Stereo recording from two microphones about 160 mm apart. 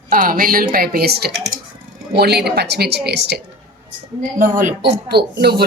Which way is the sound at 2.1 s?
90° right.